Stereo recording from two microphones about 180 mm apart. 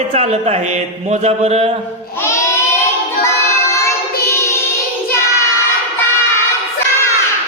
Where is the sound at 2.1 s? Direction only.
15° left (ahead or behind).